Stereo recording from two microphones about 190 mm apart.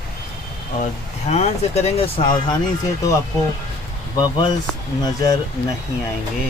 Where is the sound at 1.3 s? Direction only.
35° left (ahead or behind).